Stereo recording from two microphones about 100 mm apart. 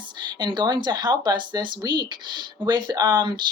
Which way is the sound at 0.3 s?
50° right (ahead or behind).